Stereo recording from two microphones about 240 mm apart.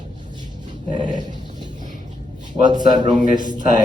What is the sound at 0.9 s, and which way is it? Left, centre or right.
Dog, centre.